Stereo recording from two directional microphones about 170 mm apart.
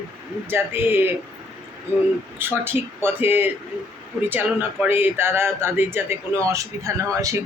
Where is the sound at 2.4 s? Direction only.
10° right (ahead or behind).